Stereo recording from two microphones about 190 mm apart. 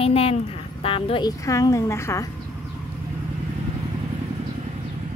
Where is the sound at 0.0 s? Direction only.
30° left (ahead or behind); by 2.2 s 15° left (ahead or behind).